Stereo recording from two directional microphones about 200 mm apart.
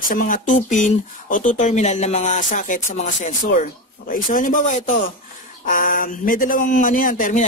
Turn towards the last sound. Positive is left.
turn(degrees=40)  # may be behind; listen again after turning